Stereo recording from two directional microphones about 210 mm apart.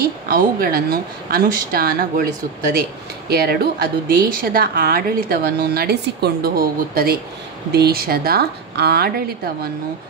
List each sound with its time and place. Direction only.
0.0 s speech: 45° right (ahead or behind)
3.3 s speech: 45° right (ahead or behind)